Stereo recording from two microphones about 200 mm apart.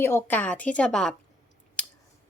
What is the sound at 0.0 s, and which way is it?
A woman's voice, 10° left (ahead or behind).